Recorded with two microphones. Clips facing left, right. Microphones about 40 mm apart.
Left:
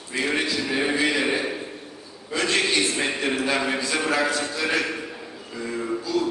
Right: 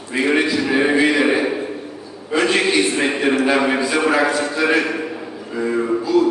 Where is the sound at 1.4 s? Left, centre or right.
Right.